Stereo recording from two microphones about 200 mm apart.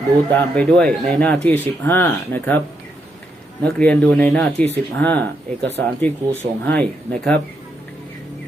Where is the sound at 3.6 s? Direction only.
5° left (ahead or behind).